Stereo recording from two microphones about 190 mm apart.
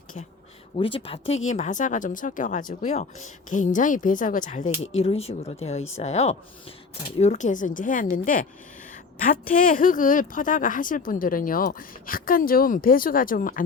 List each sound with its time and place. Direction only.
0.8 s a woman's voice: 30° left (ahead or behind); by 13.6 s 45° left (ahead or behind)